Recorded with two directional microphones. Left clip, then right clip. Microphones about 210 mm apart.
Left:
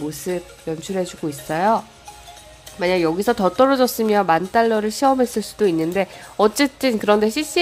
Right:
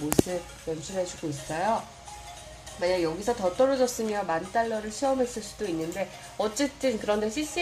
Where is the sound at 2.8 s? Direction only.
30° left (ahead or behind).